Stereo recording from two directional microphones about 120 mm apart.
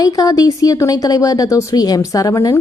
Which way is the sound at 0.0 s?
30° left (ahead or behind).